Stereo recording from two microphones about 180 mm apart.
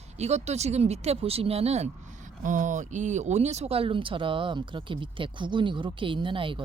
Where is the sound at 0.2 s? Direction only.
40° right (ahead or behind).